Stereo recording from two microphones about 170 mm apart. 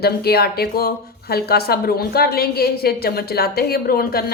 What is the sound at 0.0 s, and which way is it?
A woman's voice, 70° left (ahead or behind).